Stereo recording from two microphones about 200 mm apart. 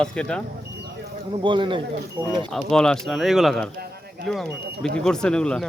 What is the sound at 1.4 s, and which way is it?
Speech, 25° right (ahead or behind).